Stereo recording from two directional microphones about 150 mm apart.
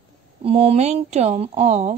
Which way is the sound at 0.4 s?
40° right (ahead or behind).